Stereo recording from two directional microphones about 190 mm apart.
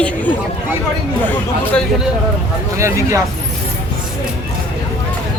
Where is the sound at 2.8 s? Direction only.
15° right (ahead or behind).